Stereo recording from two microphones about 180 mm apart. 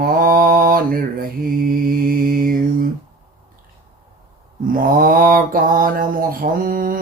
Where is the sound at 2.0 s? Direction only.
50° right (ahead or behind).